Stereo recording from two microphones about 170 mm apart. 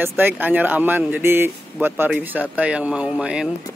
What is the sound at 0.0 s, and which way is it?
Speech, 10° right (ahead or behind).